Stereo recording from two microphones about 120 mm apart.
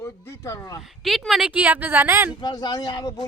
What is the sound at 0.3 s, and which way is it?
Speech, 25° left (ahead or behind).